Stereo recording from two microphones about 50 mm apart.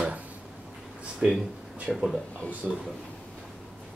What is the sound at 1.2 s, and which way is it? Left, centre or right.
Speech, right.